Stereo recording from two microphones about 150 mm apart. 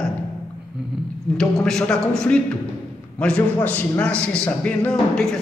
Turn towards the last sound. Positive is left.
turn(degrees=5)  # may be behind; listen again after turning